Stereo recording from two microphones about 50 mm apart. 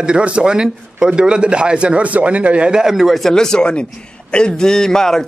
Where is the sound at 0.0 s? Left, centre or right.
Right.